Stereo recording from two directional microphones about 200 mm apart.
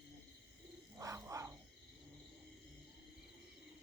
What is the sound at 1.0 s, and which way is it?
Frog, 15° right (ahead or behind).